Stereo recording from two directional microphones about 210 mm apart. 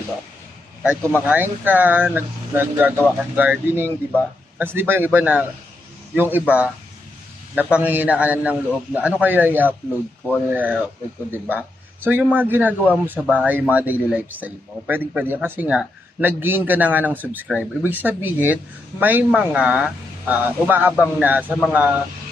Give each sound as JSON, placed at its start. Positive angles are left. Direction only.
{"t": 0.8, "sound": "speech", "side_deg": -10}